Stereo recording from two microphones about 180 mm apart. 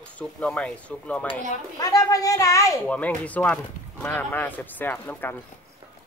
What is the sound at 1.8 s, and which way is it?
Speech, 20° left (ahead or behind).